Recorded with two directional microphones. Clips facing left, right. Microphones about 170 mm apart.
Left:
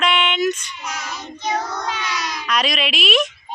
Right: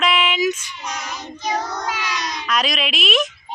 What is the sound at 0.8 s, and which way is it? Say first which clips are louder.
Child singing: even; 15° right (ahead or behind).